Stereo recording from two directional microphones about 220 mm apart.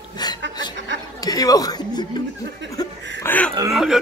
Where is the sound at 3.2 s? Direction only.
5° left (ahead or behind).